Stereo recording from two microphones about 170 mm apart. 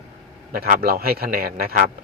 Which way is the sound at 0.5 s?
60° right (ahead or behind).